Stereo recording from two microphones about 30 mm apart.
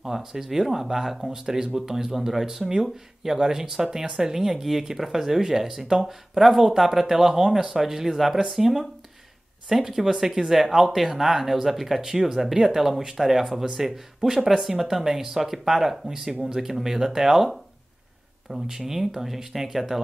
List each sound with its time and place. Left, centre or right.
0.0 s speech: centre
18.5 s speech: centre